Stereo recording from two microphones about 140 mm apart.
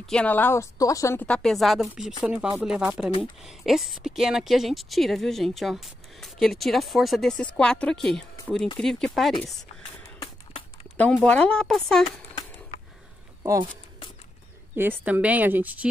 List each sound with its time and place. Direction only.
0.0 s a woman's voice: 5° left (ahead or behind)
1.3 s a woman's voice: 5° left (ahead or behind)
10.1 s a sound: 40° left (ahead or behind)
11.2 s a woman's voice: 10° left (ahead or behind)
13.4 s a sound: 25° right (ahead or behind)
14.8 s a woman's voice: 15° right (ahead or behind)